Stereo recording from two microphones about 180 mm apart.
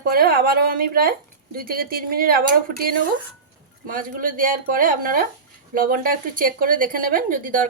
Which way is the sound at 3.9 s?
50° right (ahead or behind).